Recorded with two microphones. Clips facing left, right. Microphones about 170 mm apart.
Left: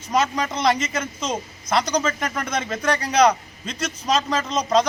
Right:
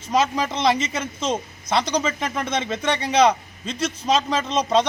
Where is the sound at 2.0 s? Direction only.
5° right (ahead or behind).